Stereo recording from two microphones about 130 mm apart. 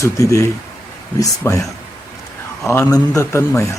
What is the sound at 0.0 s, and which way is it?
Speech, 25° left (ahead or behind).